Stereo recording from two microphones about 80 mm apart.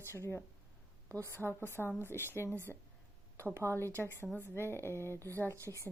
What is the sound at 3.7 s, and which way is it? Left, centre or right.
Speech, left.